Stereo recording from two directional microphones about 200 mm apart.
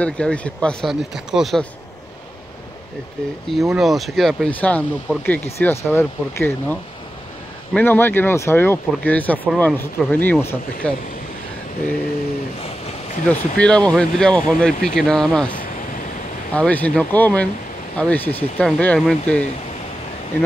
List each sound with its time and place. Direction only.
0.0 s speech: 5° left (ahead or behind)
3.4 s speech: centre (ahead or behind)
13.3 s speech: 5° left (ahead or behind)
16.5 s speech: 5° left (ahead or behind)